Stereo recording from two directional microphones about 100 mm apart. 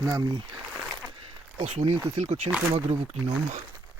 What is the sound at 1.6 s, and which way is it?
Speech, 90° right.